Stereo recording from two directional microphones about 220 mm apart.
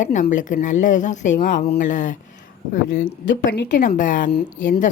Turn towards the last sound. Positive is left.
turn(degrees=35)  # may be behind; listen again after turning